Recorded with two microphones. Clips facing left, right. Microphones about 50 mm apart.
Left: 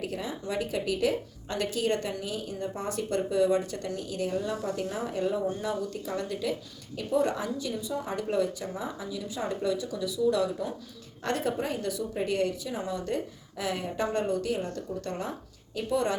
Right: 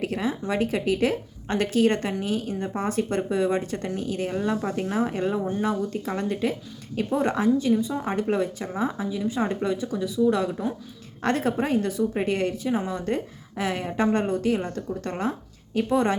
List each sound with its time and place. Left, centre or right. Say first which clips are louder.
0.0 s a woman's voice: right 7 dB; right